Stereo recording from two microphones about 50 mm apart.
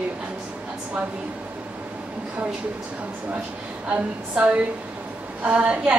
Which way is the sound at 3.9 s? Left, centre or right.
Right.